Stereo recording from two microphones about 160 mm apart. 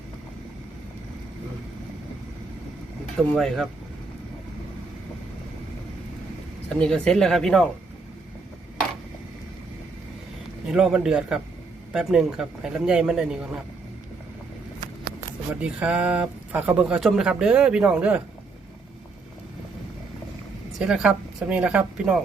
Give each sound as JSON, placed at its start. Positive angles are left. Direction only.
{"t": 3.3, "sound": "a man's voice", "side_deg": 0}
{"t": 6.7, "sound": "a man's voice", "side_deg": 5}
{"t": 10.7, "sound": "a man's voice", "side_deg": -5}
{"t": 15.8, "sound": "speech", "side_deg": -10}
{"t": 20.7, "sound": "speech", "side_deg": -5}